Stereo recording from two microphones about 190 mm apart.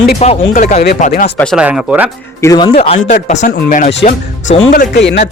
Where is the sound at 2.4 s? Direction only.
20° left (ahead or behind); by 3.9 s 45° left (ahead or behind).